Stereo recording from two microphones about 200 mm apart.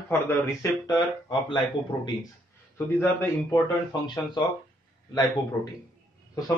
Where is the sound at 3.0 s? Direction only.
10° left (ahead or behind).